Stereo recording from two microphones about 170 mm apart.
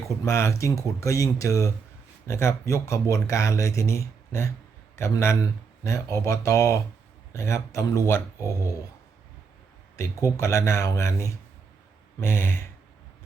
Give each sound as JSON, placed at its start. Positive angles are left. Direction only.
{"t": 0.3, "sound": "speech", "side_deg": 15}
{"t": 10.0, "sound": "speech", "side_deg": 20}